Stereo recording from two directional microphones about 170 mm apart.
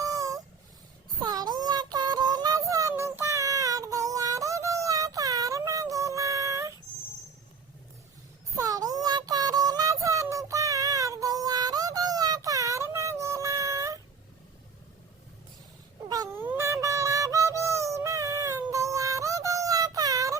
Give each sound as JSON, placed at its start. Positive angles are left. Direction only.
{"t": 0.0, "sound": "fowl", "side_deg": -20}
{"t": 1.2, "sound": "child singing", "side_deg": -25}
{"t": 8.5, "sound": "child singing", "side_deg": -20}
{"t": 16.0, "sound": "cat", "side_deg": -20}